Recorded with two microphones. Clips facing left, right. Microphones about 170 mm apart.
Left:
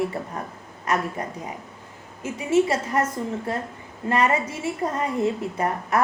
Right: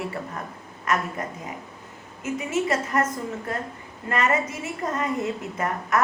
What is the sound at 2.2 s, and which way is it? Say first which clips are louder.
Speech: left 4 dB; 30° left (ahead or behind).